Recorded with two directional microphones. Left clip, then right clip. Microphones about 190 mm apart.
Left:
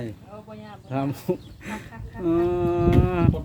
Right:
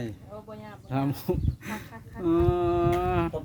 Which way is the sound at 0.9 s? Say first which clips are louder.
Left 2 dB; 10° right (ahead or behind).